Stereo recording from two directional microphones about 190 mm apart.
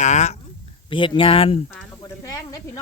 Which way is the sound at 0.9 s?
25° left (ahead or behind).